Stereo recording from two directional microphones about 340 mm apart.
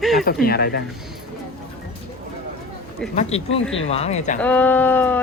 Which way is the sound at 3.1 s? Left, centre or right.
Centre.